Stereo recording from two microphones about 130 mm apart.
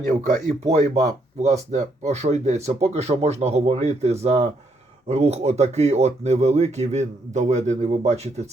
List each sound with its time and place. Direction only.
0.0 s speech: 65° right (ahead or behind)